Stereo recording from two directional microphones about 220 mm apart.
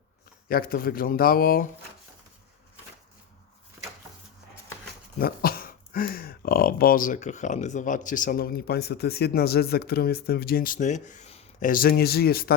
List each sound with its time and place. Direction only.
0.4 s speech: 40° left (ahead or behind)
5.2 s speech: 40° left (ahead or behind)